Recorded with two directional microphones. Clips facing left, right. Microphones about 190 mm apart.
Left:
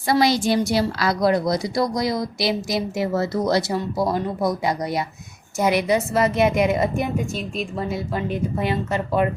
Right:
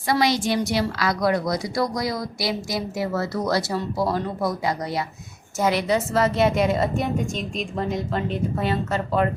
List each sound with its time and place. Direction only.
0.1 s a woman's voice: 35° left (ahead or behind); by 9.3 s 10° left (ahead or behind)